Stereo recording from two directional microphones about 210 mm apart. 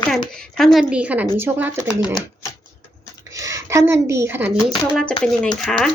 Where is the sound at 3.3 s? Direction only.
15° right (ahead or behind).